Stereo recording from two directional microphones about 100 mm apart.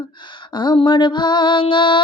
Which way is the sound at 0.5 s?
50° left (ahead or behind).